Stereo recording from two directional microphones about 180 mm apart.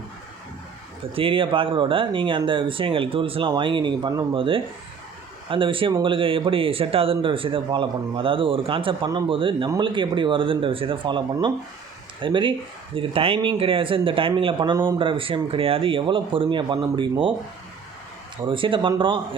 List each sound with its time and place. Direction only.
1.1 s speech: 30° right (ahead or behind)
18.4 s speech: 30° right (ahead or behind)